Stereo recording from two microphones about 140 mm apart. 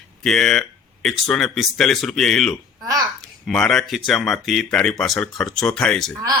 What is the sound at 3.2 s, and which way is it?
Speech, centre (ahead or behind).